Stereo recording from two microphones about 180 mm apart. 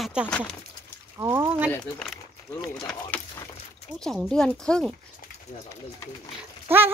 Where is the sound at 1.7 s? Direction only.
10° left (ahead or behind).